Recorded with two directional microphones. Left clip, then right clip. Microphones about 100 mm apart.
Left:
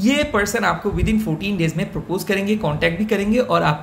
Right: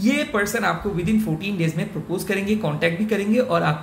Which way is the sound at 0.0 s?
45° left (ahead or behind).